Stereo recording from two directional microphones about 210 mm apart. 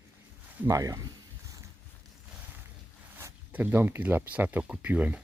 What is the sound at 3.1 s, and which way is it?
Zipper, 10° right (ahead or behind).